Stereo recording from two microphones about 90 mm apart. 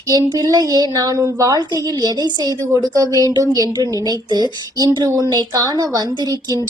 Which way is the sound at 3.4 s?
35° right (ahead or behind).